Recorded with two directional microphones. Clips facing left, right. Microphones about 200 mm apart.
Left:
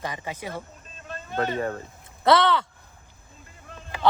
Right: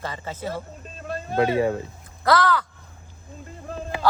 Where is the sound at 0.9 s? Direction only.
35° right (ahead or behind).